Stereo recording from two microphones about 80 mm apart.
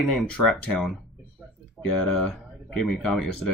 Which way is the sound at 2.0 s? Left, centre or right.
Centre.